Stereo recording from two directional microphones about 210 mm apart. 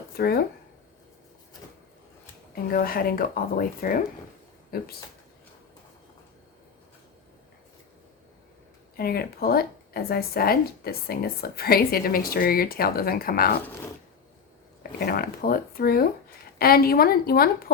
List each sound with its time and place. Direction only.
0.2 s speech: 45° left (ahead or behind)
2.6 s speech: 45° left (ahead or behind)
9.0 s speech: 45° left (ahead or behind)
14.9 s speech: 45° left (ahead or behind)